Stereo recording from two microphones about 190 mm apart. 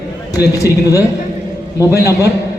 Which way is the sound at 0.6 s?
15° left (ahead or behind).